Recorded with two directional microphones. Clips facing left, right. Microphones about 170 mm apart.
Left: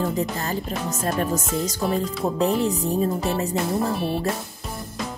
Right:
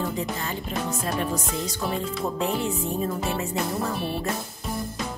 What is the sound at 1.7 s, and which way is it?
Music, 40° left (ahead or behind).